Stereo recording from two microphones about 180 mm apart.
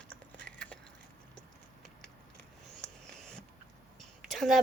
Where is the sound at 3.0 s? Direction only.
5° left (ahead or behind).